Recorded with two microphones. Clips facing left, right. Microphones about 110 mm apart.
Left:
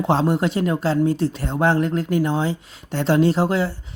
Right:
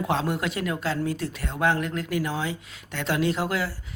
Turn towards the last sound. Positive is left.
turn(degrees=30)  # may be behind; listen again after turning